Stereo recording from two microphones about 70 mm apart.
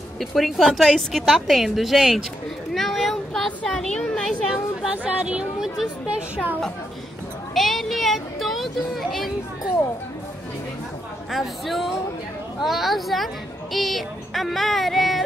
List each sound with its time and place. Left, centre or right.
0.2 s a woman's voice: centre
2.7 s a sound: centre
3.6 s speech: centre
4.8 s a woman's voice: centre
7.5 s a woman's voice: centre
11.3 s a woman's voice: centre